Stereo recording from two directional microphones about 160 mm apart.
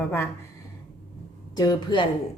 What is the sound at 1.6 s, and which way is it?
Speech, 25° left (ahead or behind).